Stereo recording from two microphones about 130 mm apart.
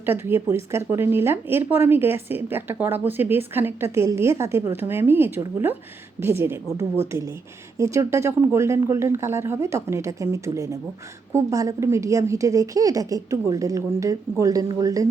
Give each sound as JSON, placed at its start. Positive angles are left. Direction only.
{"t": 0.0, "sound": "speech", "side_deg": -15}